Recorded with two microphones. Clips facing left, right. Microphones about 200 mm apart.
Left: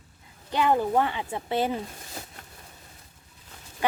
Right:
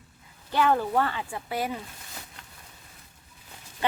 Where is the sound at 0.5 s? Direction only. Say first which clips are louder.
Left 1 dB; 15° left (ahead or behind).